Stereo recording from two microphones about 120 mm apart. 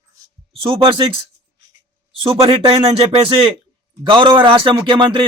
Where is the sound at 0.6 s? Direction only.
45° right (ahead or behind).